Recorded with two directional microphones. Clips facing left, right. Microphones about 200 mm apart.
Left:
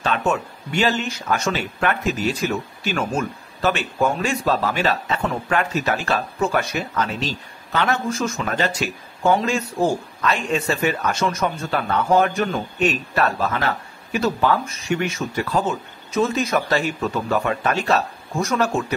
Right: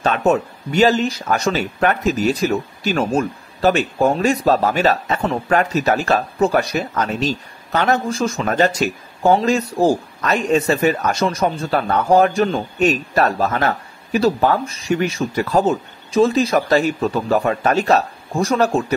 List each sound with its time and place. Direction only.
0.0 s speech: 40° right (ahead or behind)
8.5 s speech: 45° right (ahead or behind)